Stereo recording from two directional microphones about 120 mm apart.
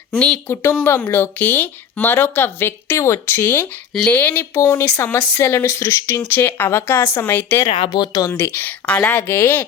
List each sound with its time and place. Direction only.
0.1 s speech: 5° left (ahead or behind)
0.4 s speech: 20° left (ahead or behind)
7.7 s speech: 40° left (ahead or behind)
8.5 s speech: 15° left (ahead or behind)